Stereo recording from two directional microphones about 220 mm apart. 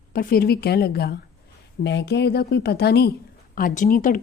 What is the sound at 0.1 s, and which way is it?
Speech, 40° left (ahead or behind).